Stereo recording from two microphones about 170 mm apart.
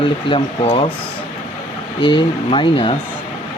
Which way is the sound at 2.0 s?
30° left (ahead or behind).